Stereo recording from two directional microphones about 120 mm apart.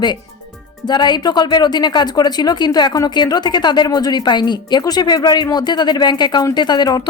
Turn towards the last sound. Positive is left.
turn(degrees=35)  # may be behind; listen again after turning